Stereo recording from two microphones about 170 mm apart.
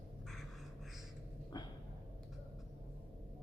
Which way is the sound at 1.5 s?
25° left (ahead or behind).